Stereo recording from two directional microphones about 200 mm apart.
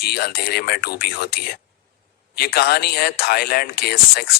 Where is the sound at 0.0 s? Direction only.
50° left (ahead or behind).